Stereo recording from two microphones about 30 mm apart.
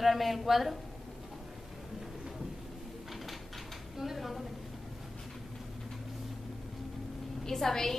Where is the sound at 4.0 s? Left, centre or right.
Centre.